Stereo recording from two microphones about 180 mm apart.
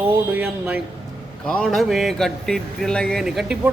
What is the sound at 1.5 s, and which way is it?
A man's voice, 5° left (ahead or behind).